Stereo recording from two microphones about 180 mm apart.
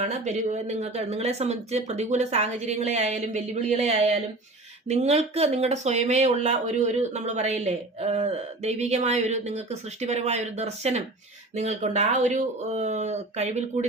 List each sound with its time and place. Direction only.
0.0 s speech: 40° right (ahead or behind)